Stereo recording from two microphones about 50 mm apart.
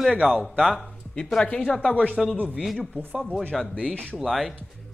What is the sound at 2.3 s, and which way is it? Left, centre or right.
Speech, right.